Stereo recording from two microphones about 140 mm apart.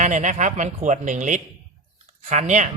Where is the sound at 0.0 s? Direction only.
60° right (ahead or behind).